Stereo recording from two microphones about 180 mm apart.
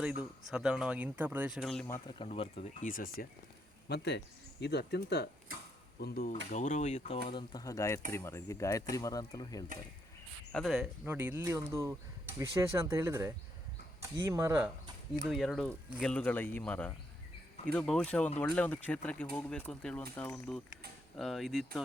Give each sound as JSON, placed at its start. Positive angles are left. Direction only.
{"t": 0.2, "sound": "speech", "side_deg": -5}
{"t": 1.9, "sound": "speech", "side_deg": 25}
{"t": 2.8, "sound": "speech", "side_deg": 50}
{"t": 3.8, "sound": "speech", "side_deg": 70}
{"t": 6.5, "sound": "speech", "side_deg": 45}
{"t": 7.3, "sound": "speech", "side_deg": 25}
{"t": 10.5, "sound": "speech", "side_deg": 0}
{"t": 11.0, "sound": "speech", "side_deg": -10}
{"t": 15.3, "sound": "speech", "side_deg": 0}